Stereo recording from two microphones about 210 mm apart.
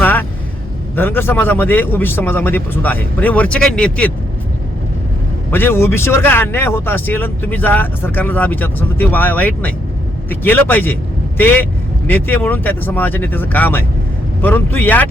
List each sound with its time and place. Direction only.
0.0 s vehicle: 10° left (ahead or behind)
0.9 s speech: 10° left (ahead or behind)
5.5 s speech: 10° left (ahead or behind)